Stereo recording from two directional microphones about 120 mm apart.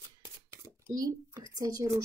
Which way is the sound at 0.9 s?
35° right (ahead or behind).